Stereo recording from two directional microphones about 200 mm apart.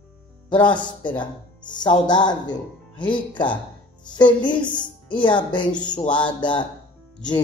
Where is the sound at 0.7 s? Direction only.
25° left (ahead or behind).